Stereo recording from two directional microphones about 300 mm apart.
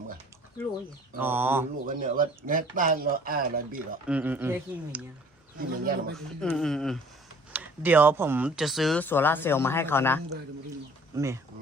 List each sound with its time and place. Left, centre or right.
1.2 s speech: centre
1.9 s speech: right
4.0 s speech: centre
5.5 s speech: right
6.1 s speech: centre
11.1 s speech: centre